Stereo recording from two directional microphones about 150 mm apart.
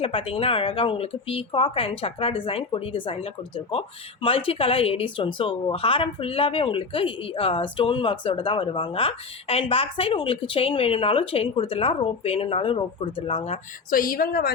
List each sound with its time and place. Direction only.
0.0 s speech: 40° left (ahead or behind)
13.9 s a woman's voice: 70° left (ahead or behind)